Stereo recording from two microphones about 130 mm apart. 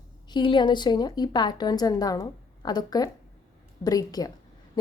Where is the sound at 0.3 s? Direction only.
35° left (ahead or behind).